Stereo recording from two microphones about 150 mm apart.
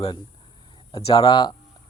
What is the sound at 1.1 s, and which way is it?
Speech, 30° left (ahead or behind).